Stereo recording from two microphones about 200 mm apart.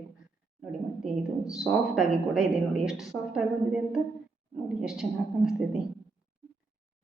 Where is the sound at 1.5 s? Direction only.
Centre (ahead or behind).